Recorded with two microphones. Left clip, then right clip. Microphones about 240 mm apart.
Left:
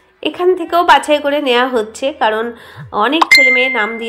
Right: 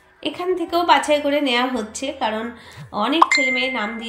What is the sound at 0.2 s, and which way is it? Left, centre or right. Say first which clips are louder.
A woman's voice: left 9 dB; centre.